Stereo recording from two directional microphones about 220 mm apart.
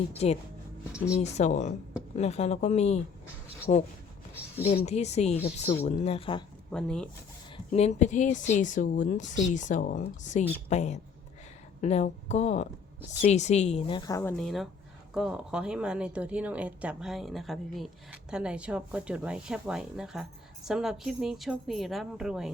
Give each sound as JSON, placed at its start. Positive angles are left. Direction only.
{"t": 1.2, "sound": "a woman's voice", "side_deg": 30}
{"t": 6.7, "sound": "speech", "side_deg": 5}
{"t": 7.5, "sound": "a woman's voice", "side_deg": 30}
{"t": 14.3, "sound": "speech", "side_deg": 0}